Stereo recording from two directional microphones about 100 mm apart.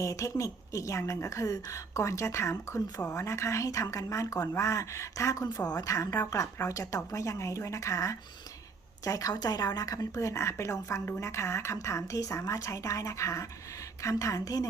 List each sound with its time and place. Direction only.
0.0 s speech: 30° left (ahead or behind)